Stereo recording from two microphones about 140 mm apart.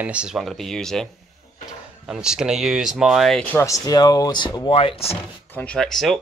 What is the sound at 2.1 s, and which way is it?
Speech, 5° right (ahead or behind).